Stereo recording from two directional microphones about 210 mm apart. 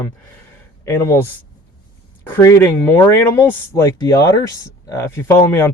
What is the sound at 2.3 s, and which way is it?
Speech, 15° left (ahead or behind).